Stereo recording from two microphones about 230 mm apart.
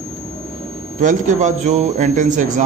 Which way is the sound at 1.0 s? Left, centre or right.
Right.